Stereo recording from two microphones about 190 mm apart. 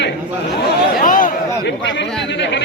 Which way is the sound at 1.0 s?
45° left (ahead or behind).